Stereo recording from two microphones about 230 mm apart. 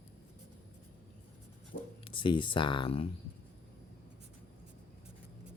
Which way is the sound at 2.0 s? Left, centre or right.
Left.